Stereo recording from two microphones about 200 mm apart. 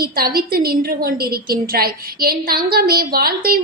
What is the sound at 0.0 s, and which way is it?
A woman's voice, 50° right (ahead or behind).